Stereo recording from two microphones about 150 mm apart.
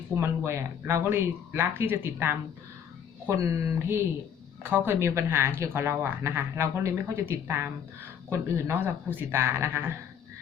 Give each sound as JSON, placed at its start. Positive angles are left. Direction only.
{"t": 0.2, "sound": "speech", "side_deg": -15}